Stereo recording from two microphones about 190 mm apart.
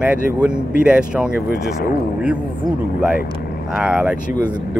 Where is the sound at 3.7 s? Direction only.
5° right (ahead or behind).